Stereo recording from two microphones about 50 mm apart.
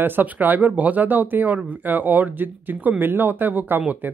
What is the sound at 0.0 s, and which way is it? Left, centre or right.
Speech, right.